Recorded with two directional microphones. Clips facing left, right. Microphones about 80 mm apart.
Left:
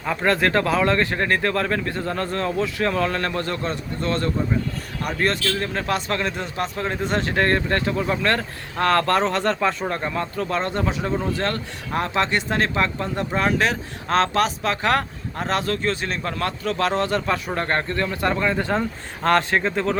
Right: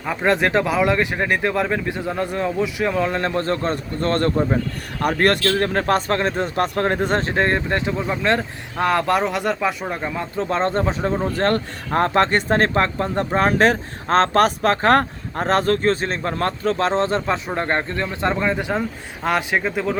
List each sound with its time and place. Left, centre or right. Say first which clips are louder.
0.0 s a man's voice: right 1 dB; centre; by 7.3 s right
7.3 s speech: right 1 dB; centre
10.3 s speech: right 8 dB; right
11.3 s speech: right 6 dB; right; by 20.0 s centre